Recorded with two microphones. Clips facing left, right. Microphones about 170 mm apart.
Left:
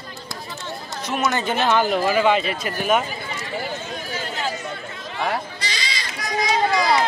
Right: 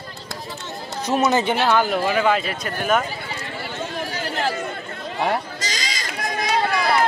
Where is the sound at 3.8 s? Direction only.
65° right (ahead or behind).